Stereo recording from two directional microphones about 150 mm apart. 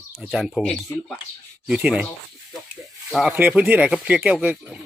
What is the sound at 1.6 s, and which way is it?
Speech, 5° right (ahead or behind).